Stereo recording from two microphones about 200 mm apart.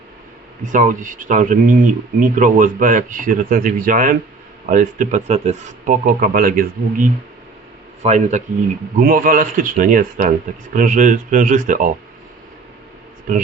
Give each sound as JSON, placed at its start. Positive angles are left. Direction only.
{"t": 0.6, "sound": "speech", "side_deg": -40}